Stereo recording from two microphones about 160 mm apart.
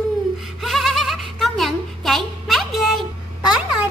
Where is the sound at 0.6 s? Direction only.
Centre (ahead or behind).